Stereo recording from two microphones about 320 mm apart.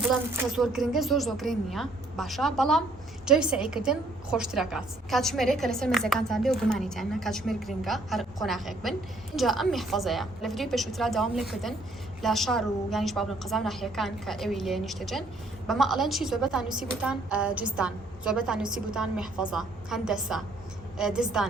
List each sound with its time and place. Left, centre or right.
0.0 s a woman's voice: centre